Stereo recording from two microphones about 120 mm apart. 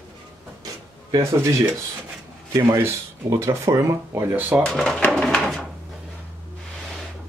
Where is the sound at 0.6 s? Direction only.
30° right (ahead or behind).